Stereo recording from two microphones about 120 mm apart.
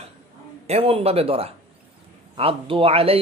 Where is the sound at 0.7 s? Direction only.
55° right (ahead or behind).